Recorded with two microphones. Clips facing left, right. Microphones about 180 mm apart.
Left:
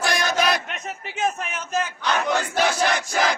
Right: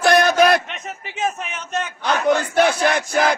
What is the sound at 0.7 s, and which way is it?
A man's voice, centre (ahead or behind).